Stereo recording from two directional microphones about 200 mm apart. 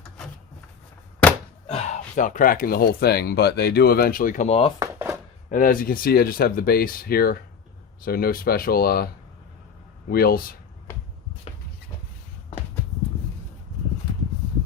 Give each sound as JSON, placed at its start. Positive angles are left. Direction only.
{"t": 1.7, "sound": "speech", "side_deg": 35}
{"t": 4.8, "sound": "chopping", "side_deg": -15}
{"t": 5.5, "sound": "speech", "side_deg": 40}
{"t": 10.1, "sound": "speech", "side_deg": 50}